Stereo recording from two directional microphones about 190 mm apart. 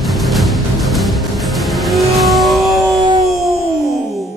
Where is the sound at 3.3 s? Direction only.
Centre (ahead or behind).